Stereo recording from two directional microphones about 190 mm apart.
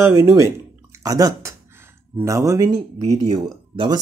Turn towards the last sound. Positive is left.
turn(degrees=-25)  # may be behind; listen again after turning